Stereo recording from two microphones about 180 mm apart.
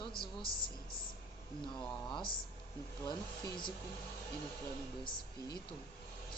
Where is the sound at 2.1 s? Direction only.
25° left (ahead or behind).